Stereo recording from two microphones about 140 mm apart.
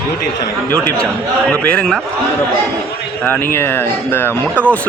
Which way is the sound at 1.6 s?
5° left (ahead or behind).